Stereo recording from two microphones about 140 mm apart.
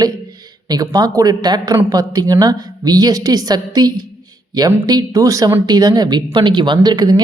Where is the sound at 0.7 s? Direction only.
25° right (ahead or behind).